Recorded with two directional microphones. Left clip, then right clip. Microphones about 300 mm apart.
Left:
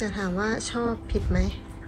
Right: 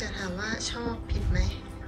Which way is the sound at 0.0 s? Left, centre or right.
Centre.